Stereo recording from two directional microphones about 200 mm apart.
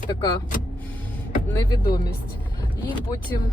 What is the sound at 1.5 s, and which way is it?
Speech, 20° left (ahead or behind).